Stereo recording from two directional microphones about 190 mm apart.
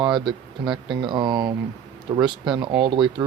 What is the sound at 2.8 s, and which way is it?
Speech, 25° right (ahead or behind).